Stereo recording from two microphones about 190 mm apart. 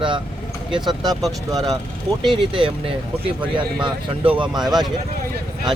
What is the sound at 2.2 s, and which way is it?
Speech, 25° right (ahead or behind).